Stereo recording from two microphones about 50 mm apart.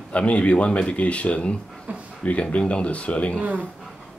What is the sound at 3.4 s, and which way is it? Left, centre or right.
Speech, right.